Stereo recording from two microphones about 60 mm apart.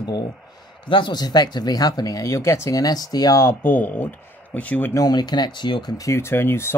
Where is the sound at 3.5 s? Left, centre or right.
Left.